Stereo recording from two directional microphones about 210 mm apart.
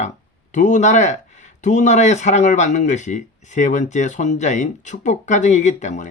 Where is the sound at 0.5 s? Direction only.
35° left (ahead or behind).